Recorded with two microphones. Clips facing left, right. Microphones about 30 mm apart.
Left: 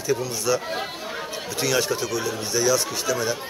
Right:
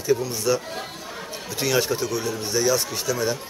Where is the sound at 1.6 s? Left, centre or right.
Centre.